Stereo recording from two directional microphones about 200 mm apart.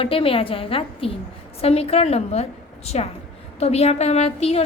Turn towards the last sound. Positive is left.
turn(degrees=30)  # may be behind; listen again after turning